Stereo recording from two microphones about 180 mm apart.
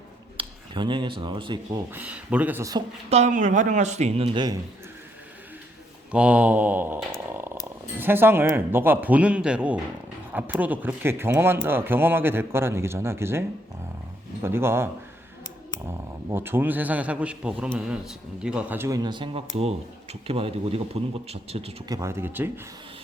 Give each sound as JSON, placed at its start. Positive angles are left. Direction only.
{"t": 0.3, "sound": "speech", "side_deg": -25}
{"t": 1.9, "sound": "speech", "side_deg": -10}
{"t": 3.1, "sound": "speech", "side_deg": -40}
{"t": 6.1, "sound": "speech", "side_deg": -5}
{"t": 14.4, "sound": "speech", "side_deg": -15}
{"t": 16.3, "sound": "speech", "side_deg": -10}
{"t": 21.8, "sound": "speech", "side_deg": -15}